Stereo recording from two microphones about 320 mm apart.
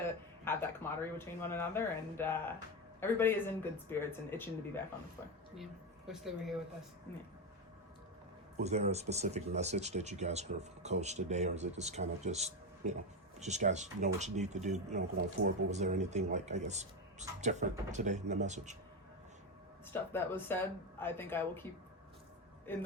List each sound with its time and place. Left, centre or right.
0.5 s speech: centre
6.1 s a woman's voice: centre
8.6 s speech: centre
19.9 s speech: centre
22.7 s a woman's voice: centre